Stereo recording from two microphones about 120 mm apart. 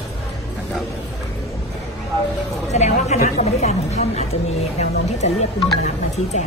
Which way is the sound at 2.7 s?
70° left (ahead or behind).